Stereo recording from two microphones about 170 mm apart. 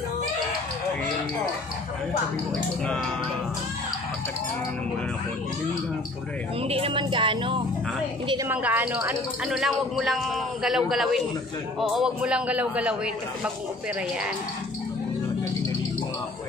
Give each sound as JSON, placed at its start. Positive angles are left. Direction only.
{"t": 6.7, "sound": "a woman's voice", "side_deg": -30}
{"t": 8.5, "sound": "a man's voice", "side_deg": -10}